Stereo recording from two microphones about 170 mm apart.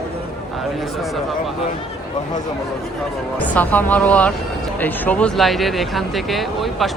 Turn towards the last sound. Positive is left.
turn(degrees=0)  # may be behind; listen again after turning